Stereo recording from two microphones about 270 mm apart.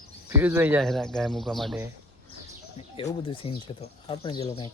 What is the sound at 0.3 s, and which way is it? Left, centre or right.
Speech, centre.